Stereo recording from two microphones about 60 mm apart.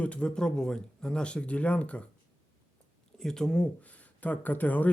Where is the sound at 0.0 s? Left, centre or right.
Centre.